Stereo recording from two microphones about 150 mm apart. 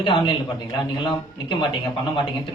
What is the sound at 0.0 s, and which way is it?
Speech, 30° left (ahead or behind).